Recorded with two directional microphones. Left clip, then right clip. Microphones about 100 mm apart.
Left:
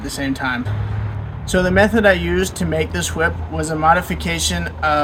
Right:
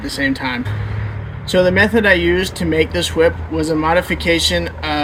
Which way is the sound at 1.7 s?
35° left (ahead or behind).